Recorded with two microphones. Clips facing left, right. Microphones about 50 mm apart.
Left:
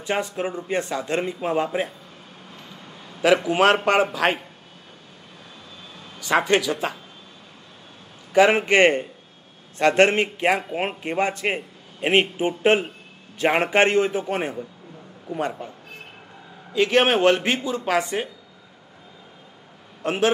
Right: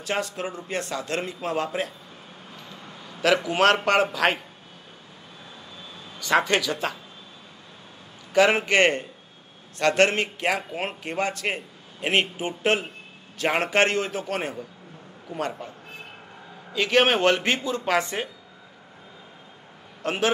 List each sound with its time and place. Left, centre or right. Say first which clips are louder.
0.0 s speech: left 3 dB; centre
3.2 s speech: left 3 dB; centre
6.1 s speech: left 2 dB; centre
8.6 s a man's voice: left 3 dB; centre
16.7 s speech: left 2 dB; centre
20.0 s a man's voice: left 3 dB; centre